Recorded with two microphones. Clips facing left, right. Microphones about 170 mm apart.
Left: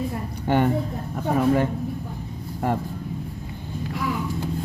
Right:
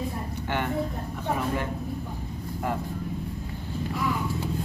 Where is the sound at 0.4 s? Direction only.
40° left (ahead or behind).